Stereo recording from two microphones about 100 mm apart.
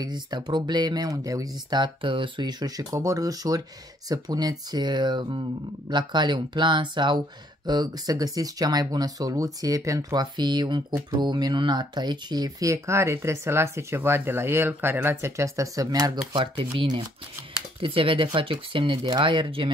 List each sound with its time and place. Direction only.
0.0 s speech: 45° right (ahead or behind)
1.7 s speech: 55° right (ahead or behind)
2.8 s speech: 30° right (ahead or behind)
16.7 s speech: 45° right (ahead or behind)
17.7 s speech: 60° right (ahead or behind)